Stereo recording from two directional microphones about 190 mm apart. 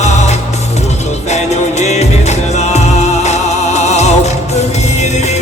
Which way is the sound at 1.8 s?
35° left (ahead or behind).